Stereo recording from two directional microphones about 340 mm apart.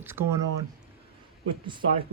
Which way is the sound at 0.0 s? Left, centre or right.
Centre.